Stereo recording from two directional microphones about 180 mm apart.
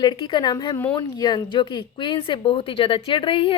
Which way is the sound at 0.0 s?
25° left (ahead or behind).